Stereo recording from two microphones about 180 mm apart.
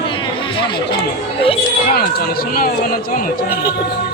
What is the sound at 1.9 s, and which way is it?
Speech, 55° left (ahead or behind).